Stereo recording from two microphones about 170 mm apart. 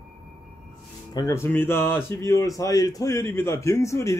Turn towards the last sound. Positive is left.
turn(degrees=20)  # may be behind; listen again after turning